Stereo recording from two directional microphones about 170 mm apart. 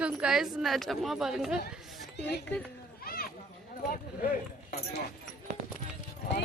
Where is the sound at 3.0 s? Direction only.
60° left (ahead or behind).